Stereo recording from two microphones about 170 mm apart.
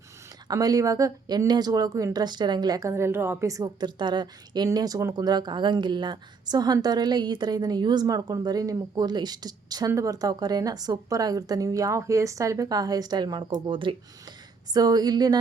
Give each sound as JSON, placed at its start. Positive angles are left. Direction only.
{"t": 0.4, "sound": "speech", "side_deg": -20}